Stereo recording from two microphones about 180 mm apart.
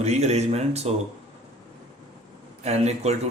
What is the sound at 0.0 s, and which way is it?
Speech, 40° right (ahead or behind).